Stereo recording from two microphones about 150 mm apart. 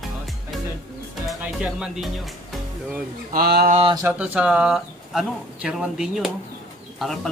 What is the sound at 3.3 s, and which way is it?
Speech, 85° right.